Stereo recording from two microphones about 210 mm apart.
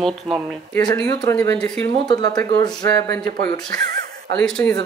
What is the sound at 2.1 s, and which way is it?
Speech, 20° left (ahead or behind).